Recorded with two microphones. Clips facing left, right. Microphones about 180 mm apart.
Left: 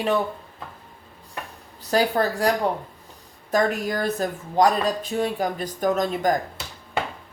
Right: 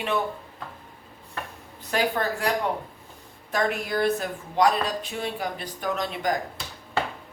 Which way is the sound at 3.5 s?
40° left (ahead or behind).